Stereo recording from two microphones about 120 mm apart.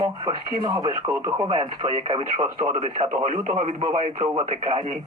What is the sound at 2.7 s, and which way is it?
Speech, 90° right.